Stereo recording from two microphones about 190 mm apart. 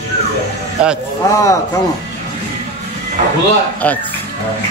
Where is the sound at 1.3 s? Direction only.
15° left (ahead or behind).